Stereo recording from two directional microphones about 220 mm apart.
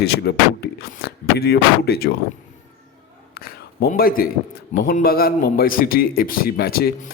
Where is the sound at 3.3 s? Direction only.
45° left (ahead or behind).